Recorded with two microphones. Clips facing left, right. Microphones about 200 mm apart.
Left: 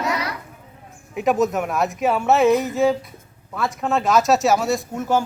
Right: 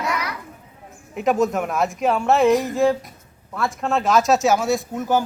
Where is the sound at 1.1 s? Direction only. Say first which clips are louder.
Even; centre (ahead or behind).